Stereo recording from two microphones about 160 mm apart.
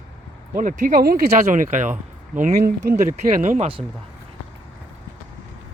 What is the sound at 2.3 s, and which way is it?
Speech, 55° right (ahead or behind).